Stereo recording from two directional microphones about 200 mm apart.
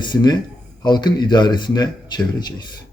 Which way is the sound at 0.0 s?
20° left (ahead or behind).